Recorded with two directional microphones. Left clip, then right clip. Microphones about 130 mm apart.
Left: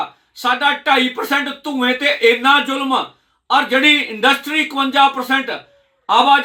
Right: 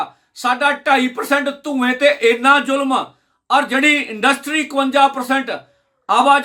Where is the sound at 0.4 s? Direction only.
45° right (ahead or behind).